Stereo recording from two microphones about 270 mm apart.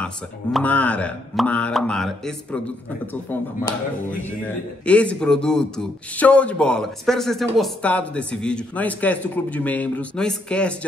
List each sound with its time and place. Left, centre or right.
0.0 s speech: centre
4.8 s speech: centre